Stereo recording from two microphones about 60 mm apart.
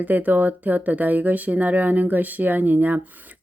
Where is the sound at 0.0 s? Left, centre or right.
Right.